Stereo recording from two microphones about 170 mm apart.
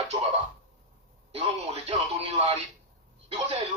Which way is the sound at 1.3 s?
40° right (ahead or behind).